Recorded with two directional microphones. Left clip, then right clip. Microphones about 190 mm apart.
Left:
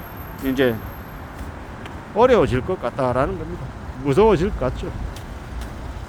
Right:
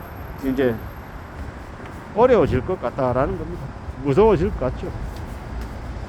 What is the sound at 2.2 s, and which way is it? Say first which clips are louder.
Speech: even; 10° left (ahead or behind).